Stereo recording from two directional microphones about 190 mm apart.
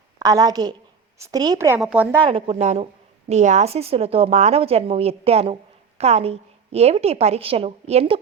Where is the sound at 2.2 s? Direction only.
30° right (ahead or behind).